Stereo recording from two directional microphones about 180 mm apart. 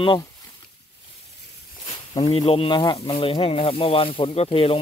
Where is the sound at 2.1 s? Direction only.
25° left (ahead or behind).